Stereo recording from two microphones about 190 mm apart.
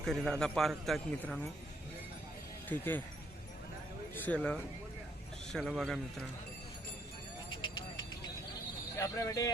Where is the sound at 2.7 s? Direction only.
10° left (ahead or behind).